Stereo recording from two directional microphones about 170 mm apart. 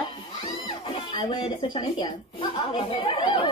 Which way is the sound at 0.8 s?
30° left (ahead or behind).